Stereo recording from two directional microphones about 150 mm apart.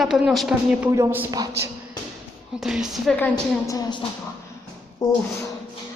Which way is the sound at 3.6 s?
25° left (ahead or behind).